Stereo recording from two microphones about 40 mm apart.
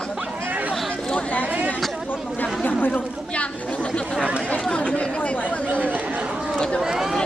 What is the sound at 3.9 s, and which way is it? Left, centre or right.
Chatter, left.